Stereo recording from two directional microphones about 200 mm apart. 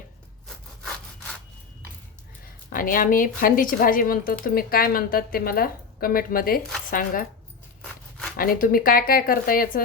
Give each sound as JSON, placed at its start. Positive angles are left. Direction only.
{"t": 0.4, "sound": "sawing", "side_deg": 0}
{"t": 2.7, "sound": "a woman's voice", "side_deg": 45}
{"t": 8.4, "sound": "a woman's voice", "side_deg": 45}